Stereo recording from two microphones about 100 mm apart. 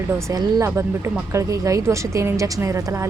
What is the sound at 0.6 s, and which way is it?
A woman's voice, 25° right (ahead or behind).